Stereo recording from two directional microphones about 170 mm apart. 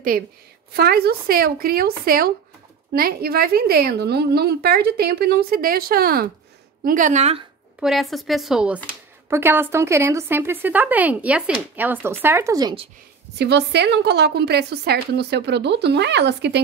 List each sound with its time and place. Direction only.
0.7 s a woman's voice: 65° right (ahead or behind); by 7.4 s 40° right (ahead or behind)
7.8 s a woman's voice: centre (ahead or behind); by 12.7 s 20° right (ahead or behind)
13.4 s a woman's voice: 80° right